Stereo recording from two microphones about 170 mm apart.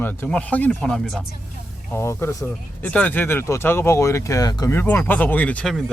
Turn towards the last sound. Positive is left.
turn(degrees=5)  # may be behind; listen again after turning